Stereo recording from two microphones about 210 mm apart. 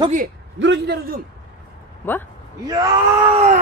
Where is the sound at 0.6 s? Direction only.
55° right (ahead or behind).